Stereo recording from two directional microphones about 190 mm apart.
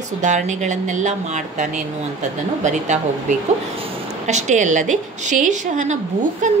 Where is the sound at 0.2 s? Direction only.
40° right (ahead or behind).